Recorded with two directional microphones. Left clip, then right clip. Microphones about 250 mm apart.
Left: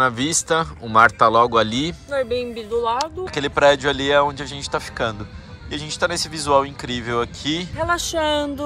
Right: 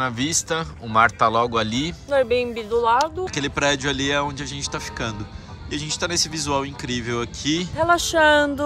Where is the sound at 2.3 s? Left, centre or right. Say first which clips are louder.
Right 2 dB; right.